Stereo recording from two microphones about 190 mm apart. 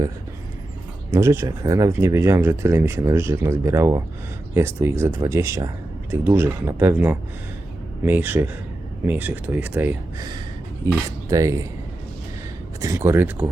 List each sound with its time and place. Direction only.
1.1 s speech: 15° right (ahead or behind)
12.8 s speech: 15° right (ahead or behind)